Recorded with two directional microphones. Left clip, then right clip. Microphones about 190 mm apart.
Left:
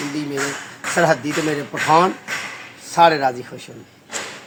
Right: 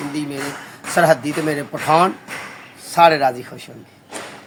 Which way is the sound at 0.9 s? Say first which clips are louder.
Right 2 dB; 20° right (ahead or behind).